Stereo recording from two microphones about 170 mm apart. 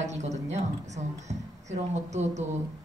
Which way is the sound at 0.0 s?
45° right (ahead or behind).